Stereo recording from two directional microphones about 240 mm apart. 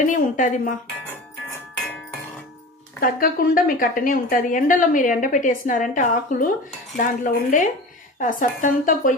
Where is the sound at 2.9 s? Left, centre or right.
Left.